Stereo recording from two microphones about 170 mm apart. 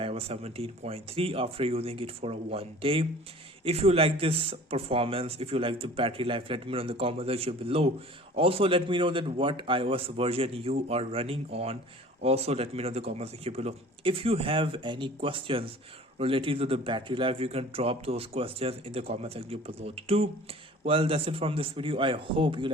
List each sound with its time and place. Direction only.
0.0 s speech: 35° right (ahead or behind)